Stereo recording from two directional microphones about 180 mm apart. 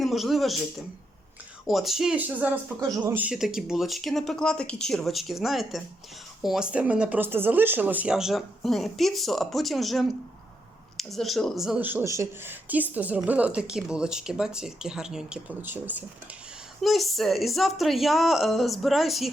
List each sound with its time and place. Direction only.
0.0 s speech: centre (ahead or behind)
1.6 s speech: centre (ahead or behind)